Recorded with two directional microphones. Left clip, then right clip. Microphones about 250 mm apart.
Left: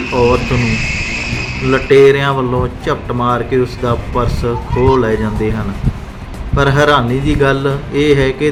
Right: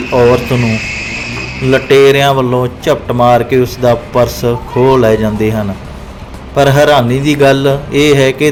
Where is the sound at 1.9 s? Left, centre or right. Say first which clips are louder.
Right 2 dB; centre.